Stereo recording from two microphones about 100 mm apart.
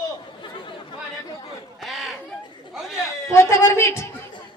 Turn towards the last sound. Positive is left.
turn(degrees=25)  # may be behind; listen again after turning